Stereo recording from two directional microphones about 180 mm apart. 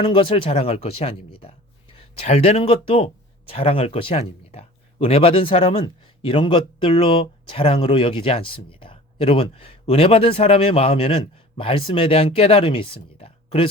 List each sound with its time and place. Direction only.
0.0 s speech: 30° left (ahead or behind)